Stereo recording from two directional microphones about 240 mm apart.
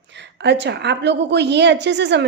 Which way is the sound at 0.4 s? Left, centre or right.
Right.